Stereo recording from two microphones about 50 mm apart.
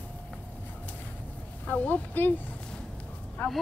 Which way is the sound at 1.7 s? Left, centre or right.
Left.